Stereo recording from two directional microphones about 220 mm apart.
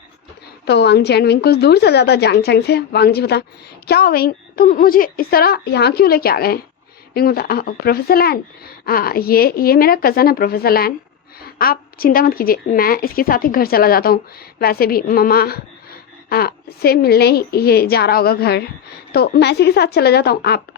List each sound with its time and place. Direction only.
0.7 s a woman's voice: 50° left (ahead or behind)